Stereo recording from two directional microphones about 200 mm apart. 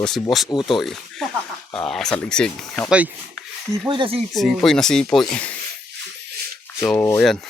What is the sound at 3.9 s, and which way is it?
Speech, 25° right (ahead or behind).